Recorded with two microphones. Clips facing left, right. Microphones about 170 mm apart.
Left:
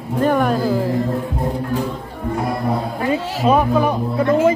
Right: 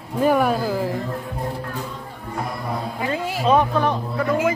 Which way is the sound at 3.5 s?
10° left (ahead or behind).